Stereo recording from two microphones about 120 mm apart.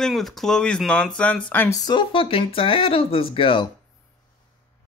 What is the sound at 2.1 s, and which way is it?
Speech, 50° left (ahead or behind).